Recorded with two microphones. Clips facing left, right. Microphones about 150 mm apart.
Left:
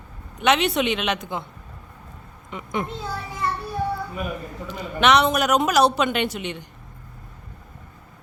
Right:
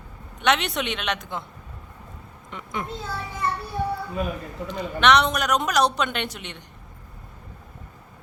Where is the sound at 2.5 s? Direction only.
5° left (ahead or behind).